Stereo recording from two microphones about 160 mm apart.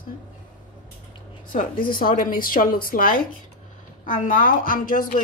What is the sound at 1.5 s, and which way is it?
Speech, 55° left (ahead or behind).